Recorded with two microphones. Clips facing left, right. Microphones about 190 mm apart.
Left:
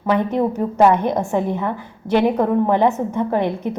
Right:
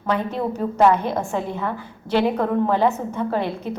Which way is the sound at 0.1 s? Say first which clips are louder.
Left 5 dB; 15° left (ahead or behind).